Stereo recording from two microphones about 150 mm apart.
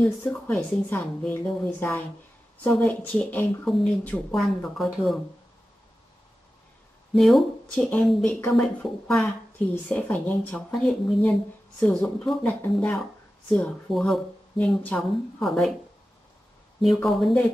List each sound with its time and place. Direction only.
0.0 s a woman's voice: 10° left (ahead or behind)
7.2 s a woman's voice: centre (ahead or behind)
16.8 s speech: centre (ahead or behind)